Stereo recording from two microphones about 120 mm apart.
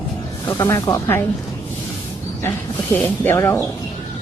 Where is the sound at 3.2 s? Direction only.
20° left (ahead or behind).